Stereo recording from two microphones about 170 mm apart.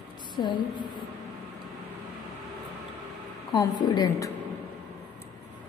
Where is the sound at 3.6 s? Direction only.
25° left (ahead or behind).